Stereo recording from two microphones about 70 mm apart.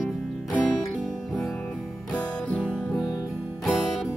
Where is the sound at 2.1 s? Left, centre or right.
Centre.